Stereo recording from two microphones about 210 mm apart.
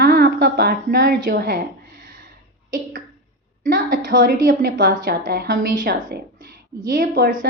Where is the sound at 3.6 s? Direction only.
40° right (ahead or behind).